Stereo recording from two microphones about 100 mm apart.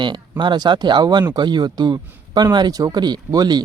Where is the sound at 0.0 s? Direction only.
50° right (ahead or behind).